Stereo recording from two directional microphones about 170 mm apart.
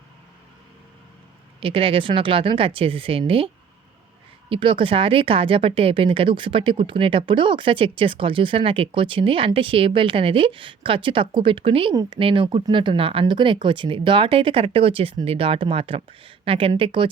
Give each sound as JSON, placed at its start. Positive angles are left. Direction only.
{"t": 1.6, "sound": "speech", "side_deg": -30}